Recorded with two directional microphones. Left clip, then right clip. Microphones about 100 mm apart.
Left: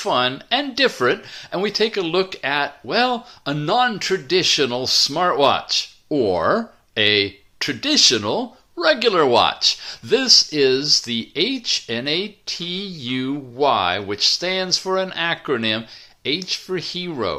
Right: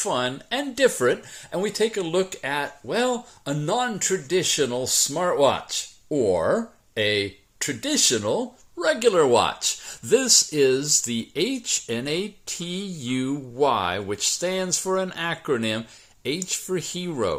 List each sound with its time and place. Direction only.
0.0 s speech: 5° right (ahead or behind)
9.8 s speech: 30° right (ahead or behind)